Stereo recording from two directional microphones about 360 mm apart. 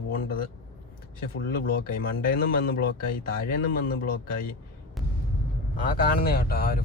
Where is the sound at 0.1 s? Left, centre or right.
Left.